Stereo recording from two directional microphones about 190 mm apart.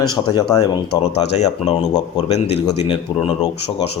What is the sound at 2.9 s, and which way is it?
Speech, 25° left (ahead or behind).